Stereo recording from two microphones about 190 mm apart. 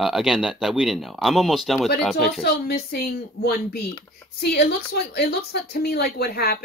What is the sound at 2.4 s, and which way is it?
Speech, 55° left (ahead or behind).